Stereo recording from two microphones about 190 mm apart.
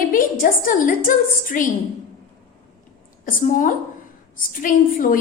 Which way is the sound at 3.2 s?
45° left (ahead or behind).